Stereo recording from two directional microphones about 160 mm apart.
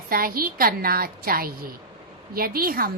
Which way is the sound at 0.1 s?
65° right (ahead or behind).